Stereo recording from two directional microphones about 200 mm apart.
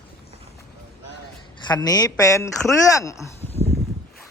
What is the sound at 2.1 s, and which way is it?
A man's voice, 15° left (ahead or behind).